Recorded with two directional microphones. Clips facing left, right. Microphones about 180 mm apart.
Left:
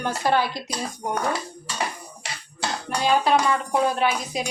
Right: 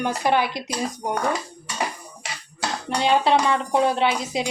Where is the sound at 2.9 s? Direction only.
25° right (ahead or behind).